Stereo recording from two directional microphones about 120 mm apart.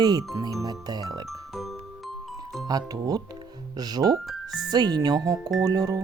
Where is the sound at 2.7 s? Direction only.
30° right (ahead or behind).